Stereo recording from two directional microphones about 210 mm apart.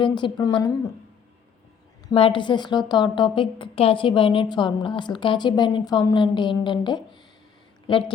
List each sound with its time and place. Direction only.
0.0 s a woman's voice: 20° left (ahead or behind)
2.0 s a woman's voice: 25° left (ahead or behind)